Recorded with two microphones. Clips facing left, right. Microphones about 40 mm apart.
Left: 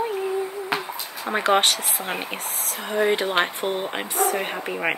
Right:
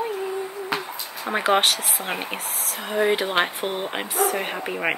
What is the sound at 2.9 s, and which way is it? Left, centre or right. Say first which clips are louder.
Speech: even; centre.